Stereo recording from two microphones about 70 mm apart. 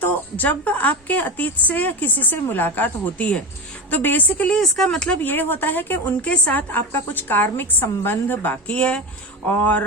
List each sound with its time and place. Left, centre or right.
0.0 s a woman's voice: left
4.4 s speech: centre
5.2 s a woman's voice: left
8.7 s speech: centre
9.5 s a woman's voice: left